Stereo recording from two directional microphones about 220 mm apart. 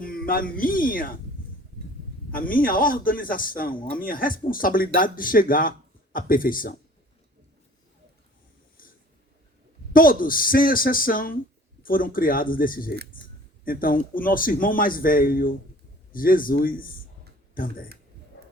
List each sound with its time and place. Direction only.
0.0 s speech: 40° left (ahead or behind)
2.3 s a man's voice: 40° left (ahead or behind)
8.8 s snoring: 40° left (ahead or behind)
9.9 s a man's voice: 40° left (ahead or behind)
18.3 s a sound: 55° left (ahead or behind)